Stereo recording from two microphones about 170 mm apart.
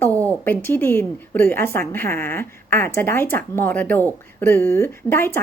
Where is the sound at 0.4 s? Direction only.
10° left (ahead or behind).